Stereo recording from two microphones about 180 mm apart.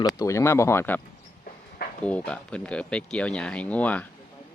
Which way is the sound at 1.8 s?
55° left (ahead or behind).